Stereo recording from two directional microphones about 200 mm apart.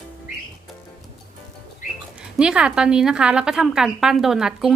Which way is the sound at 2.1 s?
5° right (ahead or behind).